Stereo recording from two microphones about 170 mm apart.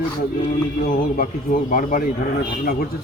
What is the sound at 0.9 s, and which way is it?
A man's voice, 55° left (ahead or behind).